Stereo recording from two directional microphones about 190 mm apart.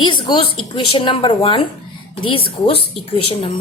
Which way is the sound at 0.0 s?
25° left (ahead or behind).